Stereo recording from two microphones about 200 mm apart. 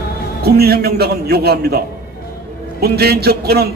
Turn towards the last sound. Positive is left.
turn(degrees=-50)  # may be behind; listen again after turning